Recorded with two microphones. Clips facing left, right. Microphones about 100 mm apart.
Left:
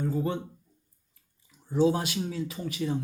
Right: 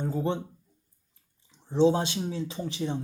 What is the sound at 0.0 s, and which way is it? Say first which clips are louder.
Speech: even; 25° right (ahead or behind).